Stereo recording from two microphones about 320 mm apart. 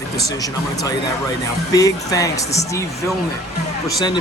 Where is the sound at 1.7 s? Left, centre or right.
Centre.